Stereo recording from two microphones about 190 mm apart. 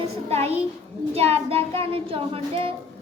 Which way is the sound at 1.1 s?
30° right (ahead or behind).